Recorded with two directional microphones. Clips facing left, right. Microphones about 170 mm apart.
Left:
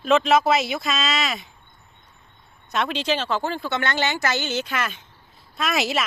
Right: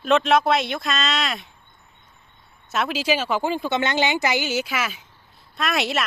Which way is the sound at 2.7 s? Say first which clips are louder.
Right 1 dB; 5° right (ahead or behind).